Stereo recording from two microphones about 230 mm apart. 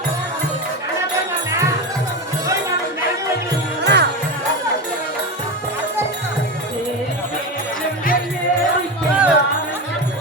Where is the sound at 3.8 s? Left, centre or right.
Right.